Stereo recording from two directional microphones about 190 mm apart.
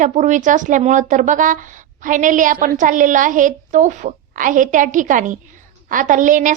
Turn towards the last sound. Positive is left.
turn(degrees=-45)  # may be behind; listen again after turning